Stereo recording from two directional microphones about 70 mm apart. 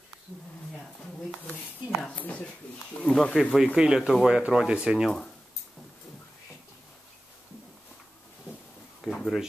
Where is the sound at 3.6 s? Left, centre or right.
Centre.